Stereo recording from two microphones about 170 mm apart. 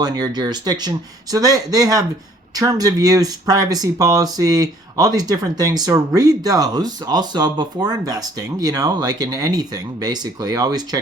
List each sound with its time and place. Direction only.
0.0 s speech: 25° right (ahead or behind)